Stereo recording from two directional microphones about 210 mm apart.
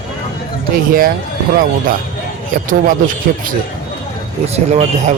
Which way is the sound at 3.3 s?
45° right (ahead or behind).